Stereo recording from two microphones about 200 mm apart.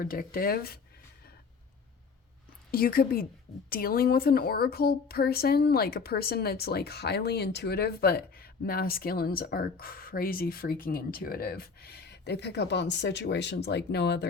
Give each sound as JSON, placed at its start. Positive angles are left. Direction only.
{"t": 0.0, "sound": "speech", "side_deg": 45}
{"t": 2.7, "sound": "speech", "side_deg": 50}